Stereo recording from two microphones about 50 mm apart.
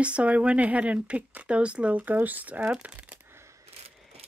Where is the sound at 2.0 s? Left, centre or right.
Right.